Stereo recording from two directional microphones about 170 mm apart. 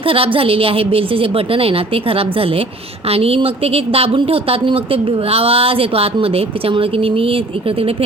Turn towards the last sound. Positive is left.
turn(degrees=-35)  # may be behind; listen again after turning